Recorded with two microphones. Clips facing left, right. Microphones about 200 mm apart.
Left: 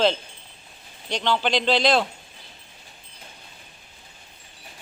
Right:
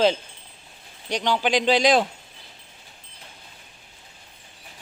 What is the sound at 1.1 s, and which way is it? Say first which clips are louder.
Speech: right 1 dB; 15° right (ahead or behind).